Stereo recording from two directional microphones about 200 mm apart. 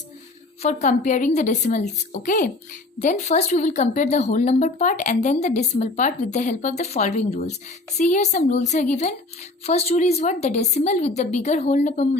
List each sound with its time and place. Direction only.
0.6 s speech: 35° left (ahead or behind)